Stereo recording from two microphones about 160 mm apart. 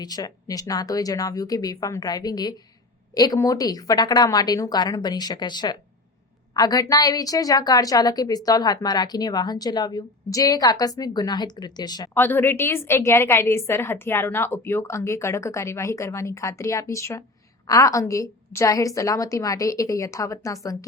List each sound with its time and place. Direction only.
0.0 s a woman's voice: 25° left (ahead or behind)
12.1 s a woman's voice: 15° left (ahead or behind)